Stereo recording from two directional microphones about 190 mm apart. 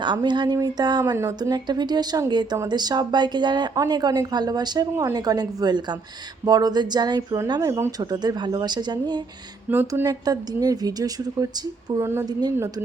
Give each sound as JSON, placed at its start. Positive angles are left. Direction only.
{"t": 0.0, "sound": "a woman's voice", "side_deg": -25}